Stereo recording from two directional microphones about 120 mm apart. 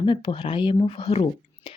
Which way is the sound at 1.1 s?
65° left (ahead or behind).